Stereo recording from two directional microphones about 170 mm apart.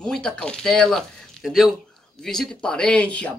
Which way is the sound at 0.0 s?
5° left (ahead or behind).